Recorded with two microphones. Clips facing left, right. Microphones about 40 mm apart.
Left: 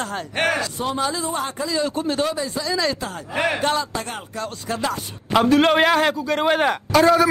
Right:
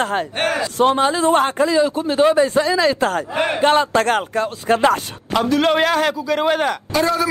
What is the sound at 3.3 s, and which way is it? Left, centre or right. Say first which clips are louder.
Speech: right 3 dB; right.